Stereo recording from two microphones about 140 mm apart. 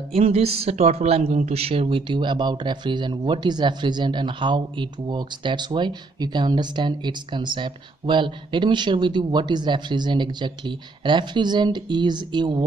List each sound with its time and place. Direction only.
0.1 s speech: 45° right (ahead or behind)